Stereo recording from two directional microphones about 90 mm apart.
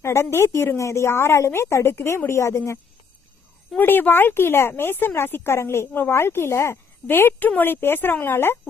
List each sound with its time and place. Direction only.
0.0 s speech: 30° left (ahead or behind)
3.8 s speech: 20° left (ahead or behind)